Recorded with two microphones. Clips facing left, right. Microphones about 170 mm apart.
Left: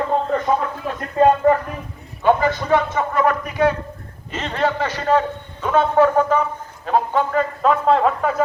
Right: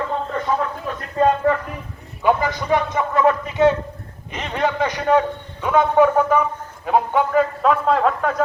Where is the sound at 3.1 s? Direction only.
25° right (ahead or behind).